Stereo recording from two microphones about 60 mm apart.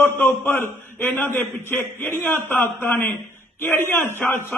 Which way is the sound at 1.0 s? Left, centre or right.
Left.